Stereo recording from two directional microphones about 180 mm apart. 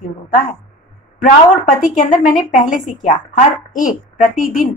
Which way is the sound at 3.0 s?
45° left (ahead or behind).